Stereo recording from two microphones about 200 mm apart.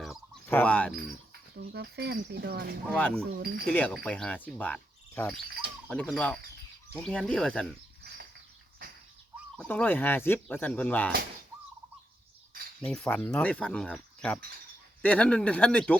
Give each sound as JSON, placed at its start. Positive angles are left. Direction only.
{"t": 0.0, "sound": "fowl", "side_deg": 0}
{"t": 0.5, "sound": "insect", "side_deg": 5}
{"t": 1.7, "sound": "speech", "side_deg": -55}
{"t": 2.9, "sound": "speech", "side_deg": 5}
{"t": 3.3, "sound": "speech", "side_deg": -45}
{"t": 3.7, "sound": "insect", "side_deg": 5}
{"t": 6.9, "sound": "speech", "side_deg": 5}
{"t": 9.6, "sound": "insect", "side_deg": 5}
{"t": 12.8, "sound": "speech", "side_deg": 5}
{"t": 15.0, "sound": "insect", "side_deg": 5}